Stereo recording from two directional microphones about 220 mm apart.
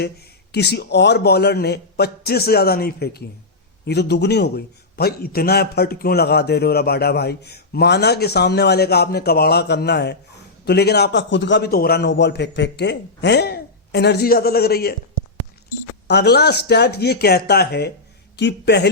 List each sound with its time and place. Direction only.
0.0 s a man's voice: 50° left (ahead or behind)
16.0 s a man's voice: 50° left (ahead or behind)